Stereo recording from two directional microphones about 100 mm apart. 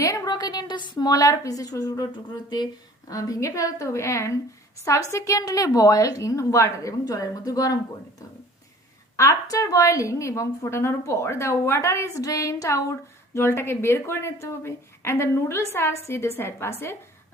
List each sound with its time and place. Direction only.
0.0 s a woman's voice: 35° left (ahead or behind)
9.1 s a woman's voice: 30° left (ahead or behind)